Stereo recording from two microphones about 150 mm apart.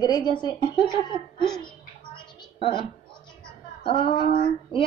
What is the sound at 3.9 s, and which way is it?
Speech, 35° left (ahead or behind).